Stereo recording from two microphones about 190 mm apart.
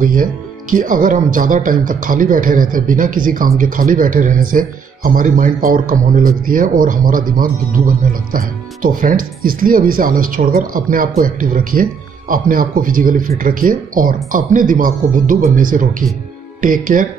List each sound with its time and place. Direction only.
0.0 s speech: 45° right (ahead or behind)